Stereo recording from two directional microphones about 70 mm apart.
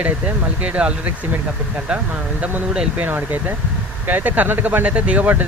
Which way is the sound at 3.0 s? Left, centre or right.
Right.